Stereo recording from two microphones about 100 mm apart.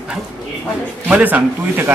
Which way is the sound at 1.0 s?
15° right (ahead or behind).